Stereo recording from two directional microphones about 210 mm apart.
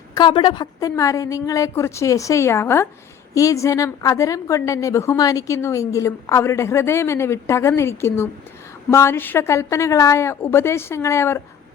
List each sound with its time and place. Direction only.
0.1 s a woman's voice: 20° left (ahead or behind)